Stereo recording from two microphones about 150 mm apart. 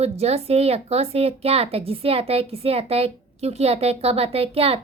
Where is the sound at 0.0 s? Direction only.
45° right (ahead or behind).